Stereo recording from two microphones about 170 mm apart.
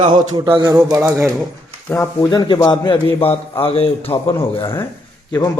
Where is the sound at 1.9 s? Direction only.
15° left (ahead or behind).